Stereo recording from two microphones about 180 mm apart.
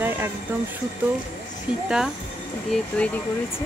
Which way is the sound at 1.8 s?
5° right (ahead or behind).